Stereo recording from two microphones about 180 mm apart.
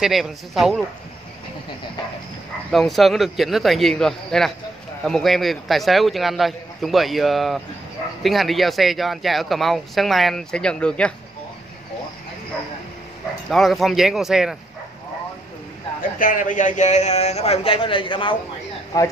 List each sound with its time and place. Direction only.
0.0 s speech: centre (ahead or behind)
2.7 s speech: centre (ahead or behind)
13.5 s speech: centre (ahead or behind)
16.2 s a man's voice: 45° left (ahead or behind); by 19.1 s 20° left (ahead or behind)